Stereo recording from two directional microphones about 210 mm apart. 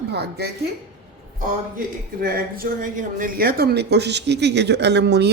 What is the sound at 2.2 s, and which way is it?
Speech, 45° right (ahead or behind).